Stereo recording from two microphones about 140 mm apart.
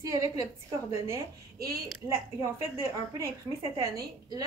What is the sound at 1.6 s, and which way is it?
Speech, 90° right.